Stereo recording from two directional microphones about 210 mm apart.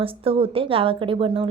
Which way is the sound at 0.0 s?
25° right (ahead or behind).